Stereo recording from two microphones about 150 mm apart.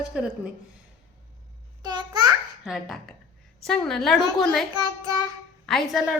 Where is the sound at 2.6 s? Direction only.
Centre (ahead or behind).